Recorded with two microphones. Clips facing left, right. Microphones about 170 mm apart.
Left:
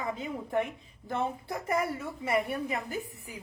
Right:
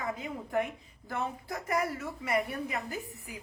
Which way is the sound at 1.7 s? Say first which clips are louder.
Left 1 dB; 25° left (ahead or behind).